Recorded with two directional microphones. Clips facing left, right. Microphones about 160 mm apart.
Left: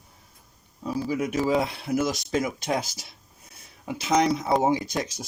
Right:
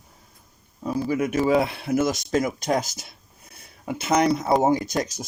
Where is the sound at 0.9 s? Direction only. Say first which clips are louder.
Right 3 dB; 55° right (ahead or behind).